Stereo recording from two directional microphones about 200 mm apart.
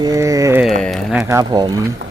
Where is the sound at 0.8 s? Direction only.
Centre (ahead or behind).